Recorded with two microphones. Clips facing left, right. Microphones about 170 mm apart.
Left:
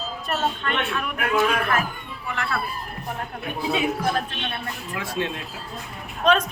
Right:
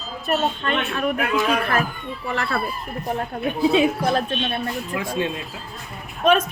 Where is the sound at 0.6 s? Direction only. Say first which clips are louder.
Right 4 dB; 35° right (ahead or behind).